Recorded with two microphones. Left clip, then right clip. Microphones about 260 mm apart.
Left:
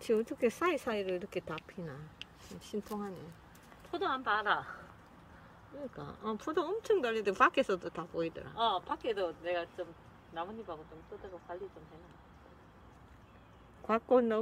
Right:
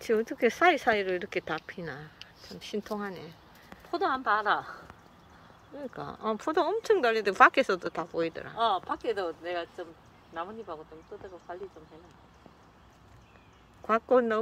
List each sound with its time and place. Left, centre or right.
0.0 s a woman's voice: centre; by 4.7 s right
5.9 s speech: centre
8.5 s speech: centre
13.8 s speech: centre